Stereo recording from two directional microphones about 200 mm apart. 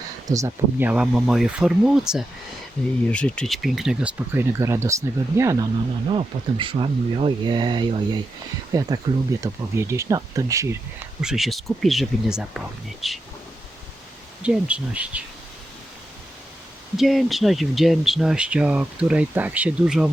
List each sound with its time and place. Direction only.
0.3 s speech: 15° right (ahead or behind)
6.1 s speech: 25° right (ahead or behind)
11.2 s speech: centre (ahead or behind)
14.4 s speech: 5° right (ahead or behind)
17.0 s speech: centre (ahead or behind)